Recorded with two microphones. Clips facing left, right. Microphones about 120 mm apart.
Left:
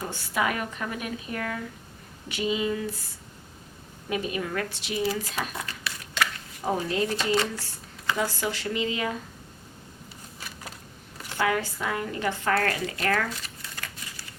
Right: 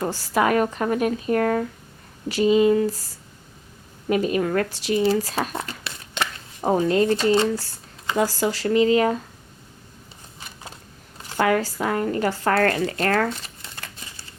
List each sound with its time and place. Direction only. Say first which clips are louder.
0.0 s speech: right 7 dB; 40° right (ahead or behind)
4.1 s speech: right 8 dB; 50° right (ahead or behind); by 6.7 s 25° right (ahead or behind)
6.7 s speech: right 8 dB; 45° right (ahead or behind)
7.3 s speech: right 6 dB; 30° right (ahead or behind)
11.3 s speech: right 6 dB; 45° right (ahead or behind); by 14.3 s 30° right (ahead or behind)